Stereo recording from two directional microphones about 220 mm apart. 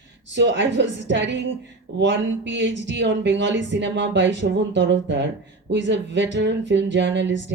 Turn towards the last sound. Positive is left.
turn(degrees=-55)  # may be behind; listen again after turning